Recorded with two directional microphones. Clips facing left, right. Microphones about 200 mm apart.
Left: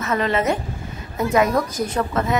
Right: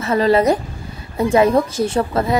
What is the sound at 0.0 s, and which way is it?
A woman's voice, 30° right (ahead or behind).